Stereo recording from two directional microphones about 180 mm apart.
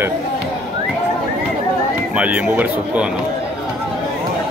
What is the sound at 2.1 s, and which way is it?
Speech, 10° right (ahead or behind).